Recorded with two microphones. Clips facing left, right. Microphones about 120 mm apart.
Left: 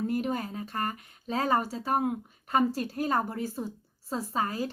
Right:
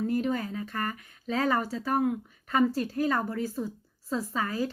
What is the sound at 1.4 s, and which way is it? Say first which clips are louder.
A woman's voice: even; 35° left (ahead or behind).